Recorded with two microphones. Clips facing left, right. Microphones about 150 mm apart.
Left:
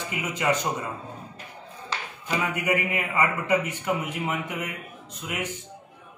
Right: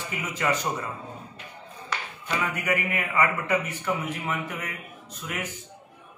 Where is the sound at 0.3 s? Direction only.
20° left (ahead or behind).